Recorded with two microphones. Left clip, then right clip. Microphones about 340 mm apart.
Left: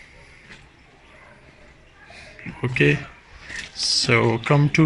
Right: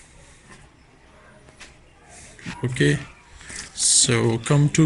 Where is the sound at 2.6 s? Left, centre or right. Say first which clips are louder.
Left 3 dB; centre.